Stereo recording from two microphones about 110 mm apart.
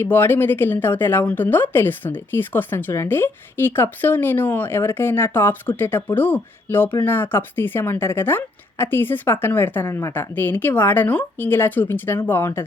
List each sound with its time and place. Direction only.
0.0 s a woman's voice: 20° left (ahead or behind)